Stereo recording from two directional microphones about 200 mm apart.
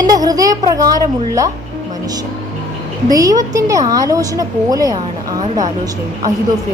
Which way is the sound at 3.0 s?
15° right (ahead or behind).